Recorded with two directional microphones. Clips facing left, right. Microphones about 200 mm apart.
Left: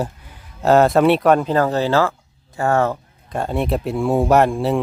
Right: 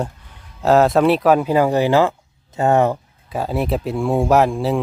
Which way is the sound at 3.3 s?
5° right (ahead or behind).